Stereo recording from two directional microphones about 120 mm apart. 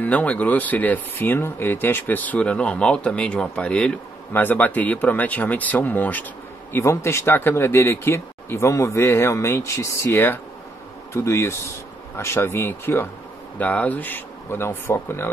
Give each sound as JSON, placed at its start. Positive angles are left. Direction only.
{"t": 0.0, "sound": "speech", "side_deg": 10}